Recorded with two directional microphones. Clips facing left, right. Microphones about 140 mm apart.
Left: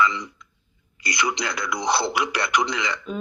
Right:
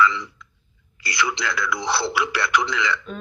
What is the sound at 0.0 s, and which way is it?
A woman's voice, 20° left (ahead or behind).